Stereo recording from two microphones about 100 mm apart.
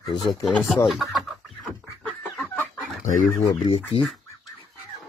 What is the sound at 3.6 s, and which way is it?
Speech, 70° left (ahead or behind).